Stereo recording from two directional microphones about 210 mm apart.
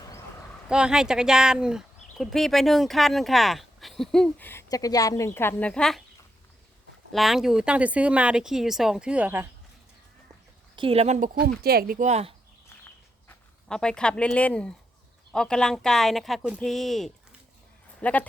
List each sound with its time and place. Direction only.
0.7 s speech: 5° right (ahead or behind)
7.1 s speech: centre (ahead or behind)
10.8 s speech: 25° right (ahead or behind)
11.6 s speech: 45° right (ahead or behind)
13.2 s speech: 5° left (ahead or behind)